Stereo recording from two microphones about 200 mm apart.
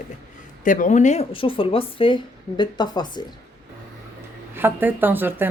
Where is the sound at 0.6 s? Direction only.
40° left (ahead or behind); by 3.2 s 20° left (ahead or behind).